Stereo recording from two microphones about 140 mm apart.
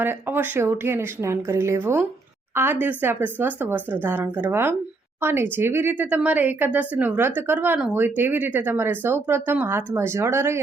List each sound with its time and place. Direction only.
0.0 s a woman's voice: 15° right (ahead or behind)